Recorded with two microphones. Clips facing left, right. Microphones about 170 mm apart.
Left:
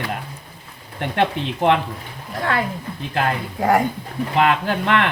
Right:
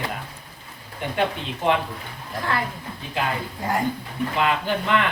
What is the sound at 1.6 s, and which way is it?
Speech, 65° left (ahead or behind).